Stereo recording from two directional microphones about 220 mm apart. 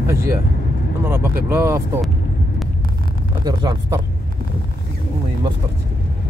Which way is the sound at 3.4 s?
20° right (ahead or behind).